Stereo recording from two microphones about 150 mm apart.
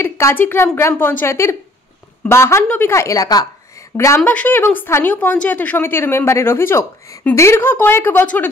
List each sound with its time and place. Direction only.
0.0 s a woman's voice: 15° left (ahead or behind)